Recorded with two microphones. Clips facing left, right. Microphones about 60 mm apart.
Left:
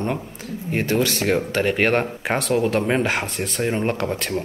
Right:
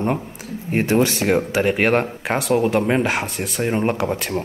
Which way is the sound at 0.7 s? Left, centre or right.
Right.